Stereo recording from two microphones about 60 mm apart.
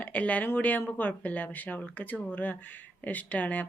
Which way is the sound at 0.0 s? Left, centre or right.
Left.